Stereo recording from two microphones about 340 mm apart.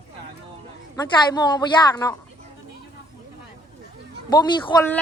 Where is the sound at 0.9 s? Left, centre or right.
Centre.